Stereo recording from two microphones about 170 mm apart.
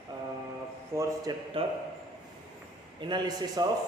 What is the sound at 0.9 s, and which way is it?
Speech, 15° right (ahead or behind).